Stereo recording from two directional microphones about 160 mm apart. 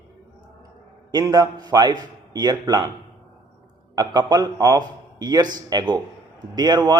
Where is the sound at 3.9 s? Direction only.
25° right (ahead or behind).